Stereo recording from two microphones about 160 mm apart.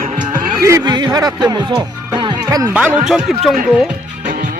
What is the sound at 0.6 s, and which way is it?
Speech, 20° right (ahead or behind).